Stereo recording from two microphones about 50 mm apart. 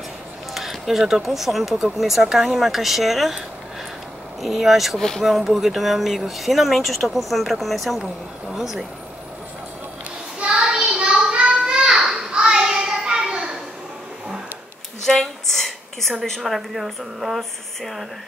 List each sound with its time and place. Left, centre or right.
0.6 s speech: centre
8.0 s speech: centre
10.4 s a sound: centre
15.0 s a woman's voice: centre